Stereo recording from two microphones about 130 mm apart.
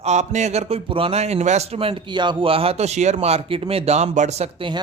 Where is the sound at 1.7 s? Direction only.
40° right (ahead or behind); by 4.6 s 55° right (ahead or behind).